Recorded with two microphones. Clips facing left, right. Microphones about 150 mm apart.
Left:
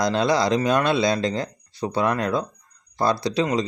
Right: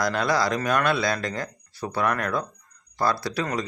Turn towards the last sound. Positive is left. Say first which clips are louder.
# left 5 dB
turn(degrees=20)  # may be behind; listen again after turning